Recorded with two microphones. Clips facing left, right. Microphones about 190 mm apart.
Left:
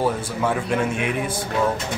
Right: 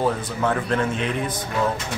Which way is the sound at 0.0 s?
10° left (ahead or behind).